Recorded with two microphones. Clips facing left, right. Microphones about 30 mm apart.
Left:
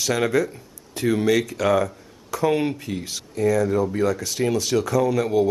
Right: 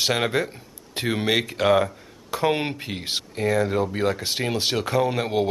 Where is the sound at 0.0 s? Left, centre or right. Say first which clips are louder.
Left 2 dB; right.